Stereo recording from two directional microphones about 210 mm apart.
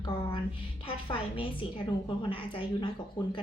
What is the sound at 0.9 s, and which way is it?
A woman's voice, 25° left (ahead or behind).